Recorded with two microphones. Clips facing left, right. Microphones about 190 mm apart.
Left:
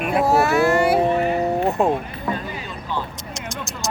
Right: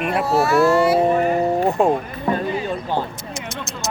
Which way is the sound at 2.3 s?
50° right (ahead or behind).